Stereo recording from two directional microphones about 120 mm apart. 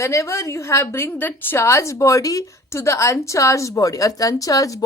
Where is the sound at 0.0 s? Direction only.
25° left (ahead or behind).